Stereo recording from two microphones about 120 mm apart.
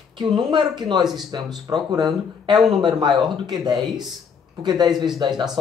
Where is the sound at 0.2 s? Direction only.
40° right (ahead or behind).